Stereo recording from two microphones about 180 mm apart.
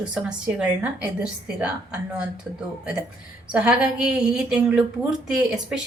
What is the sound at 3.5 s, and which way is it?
A woman's voice, 5° right (ahead or behind).